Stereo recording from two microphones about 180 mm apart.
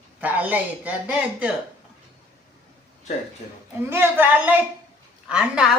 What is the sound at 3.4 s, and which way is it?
Speech, 35° left (ahead or behind).